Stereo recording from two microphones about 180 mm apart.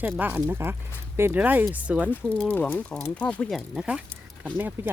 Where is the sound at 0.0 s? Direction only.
10° right (ahead or behind).